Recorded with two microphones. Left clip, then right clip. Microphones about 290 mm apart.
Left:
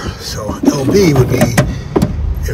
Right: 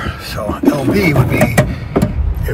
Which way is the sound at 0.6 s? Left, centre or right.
Centre.